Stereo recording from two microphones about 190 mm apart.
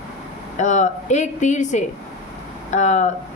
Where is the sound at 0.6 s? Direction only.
40° left (ahead or behind).